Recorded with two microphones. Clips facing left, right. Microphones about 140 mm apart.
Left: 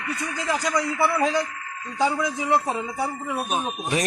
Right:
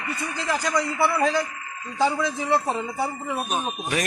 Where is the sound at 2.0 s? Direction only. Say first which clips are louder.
Even; 10° left (ahead or behind).